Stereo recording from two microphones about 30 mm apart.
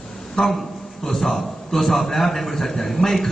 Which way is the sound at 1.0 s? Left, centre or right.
Centre.